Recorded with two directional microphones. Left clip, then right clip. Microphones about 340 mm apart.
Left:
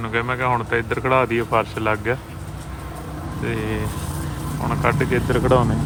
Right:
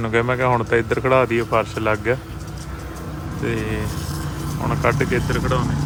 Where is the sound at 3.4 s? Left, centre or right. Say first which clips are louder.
Right 1 dB; centre.